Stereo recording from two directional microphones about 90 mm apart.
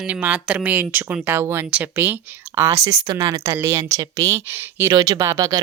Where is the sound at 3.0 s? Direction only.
55° right (ahead or behind).